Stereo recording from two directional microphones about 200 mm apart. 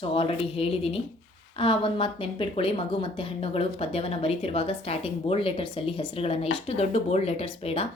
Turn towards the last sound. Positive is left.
turn(degrees=30)  # may be behind; listen again after turning